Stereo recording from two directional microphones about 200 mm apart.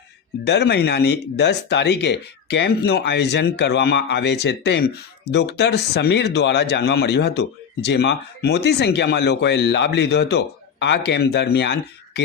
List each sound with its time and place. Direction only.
0.4 s speech: 60° left (ahead or behind)